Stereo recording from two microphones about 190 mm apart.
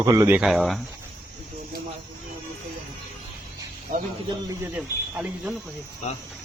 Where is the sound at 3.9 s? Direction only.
45° right (ahead or behind).